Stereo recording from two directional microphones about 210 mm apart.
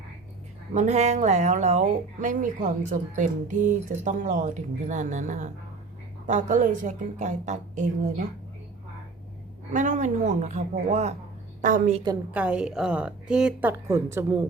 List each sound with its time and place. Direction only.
0.7 s speech: 35° right (ahead or behind)
9.7 s speech: 35° right (ahead or behind)
12.3 s a woman's voice: 5° right (ahead or behind)